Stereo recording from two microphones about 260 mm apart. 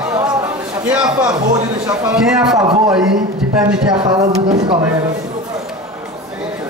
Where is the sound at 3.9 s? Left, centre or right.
Centre.